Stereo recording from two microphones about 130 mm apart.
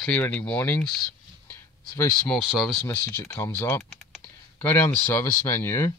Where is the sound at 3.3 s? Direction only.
20° left (ahead or behind).